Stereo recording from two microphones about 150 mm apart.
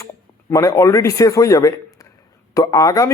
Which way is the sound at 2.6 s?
25° left (ahead or behind).